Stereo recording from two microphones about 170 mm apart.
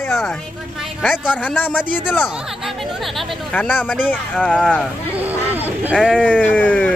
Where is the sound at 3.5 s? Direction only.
10° left (ahead or behind).